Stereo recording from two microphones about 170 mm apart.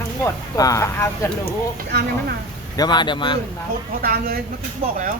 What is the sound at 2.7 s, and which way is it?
Speech, 25° left (ahead or behind).